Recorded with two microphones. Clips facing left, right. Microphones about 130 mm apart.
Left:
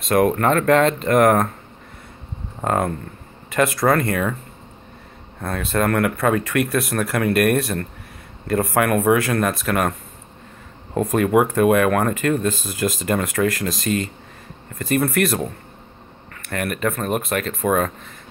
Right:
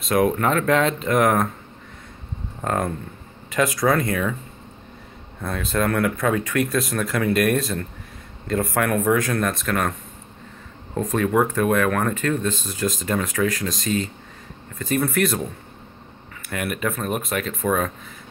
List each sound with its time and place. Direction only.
0.0 s speech: centre (ahead or behind)
2.6 s speech: 5° left (ahead or behind)
5.5 s speech: centre (ahead or behind)
6.7 s speech: 65° left (ahead or behind)
8.5 s speech: 5° left (ahead or behind)
11.0 s speech: 5° left (ahead or behind)
16.4 s speech: 5° right (ahead or behind)